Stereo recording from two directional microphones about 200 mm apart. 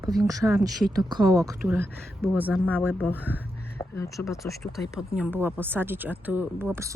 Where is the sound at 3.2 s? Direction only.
10° right (ahead or behind).